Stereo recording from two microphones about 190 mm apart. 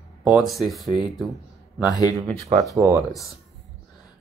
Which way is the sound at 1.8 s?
20° left (ahead or behind).